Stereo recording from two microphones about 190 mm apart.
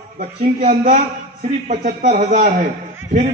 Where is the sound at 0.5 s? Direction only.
45° right (ahead or behind).